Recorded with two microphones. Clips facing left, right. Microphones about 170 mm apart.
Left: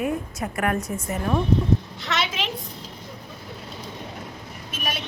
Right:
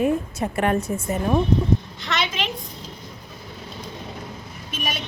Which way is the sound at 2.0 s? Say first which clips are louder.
Right 1 dB; 5° left (ahead or behind).